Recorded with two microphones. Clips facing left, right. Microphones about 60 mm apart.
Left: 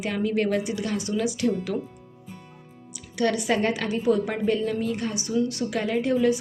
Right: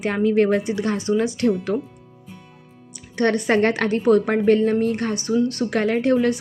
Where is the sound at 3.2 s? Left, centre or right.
Right.